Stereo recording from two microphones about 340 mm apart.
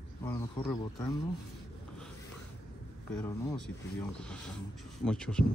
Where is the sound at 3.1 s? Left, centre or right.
Centre.